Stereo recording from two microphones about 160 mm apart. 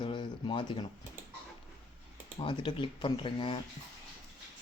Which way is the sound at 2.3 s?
35° left (ahead or behind).